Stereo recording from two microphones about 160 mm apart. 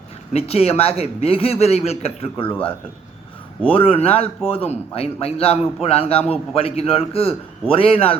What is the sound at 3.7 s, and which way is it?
A man's voice, 35° left (ahead or behind).